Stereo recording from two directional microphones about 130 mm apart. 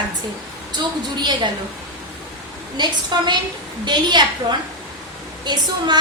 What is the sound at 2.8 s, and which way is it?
A woman's voice, 35° right (ahead or behind).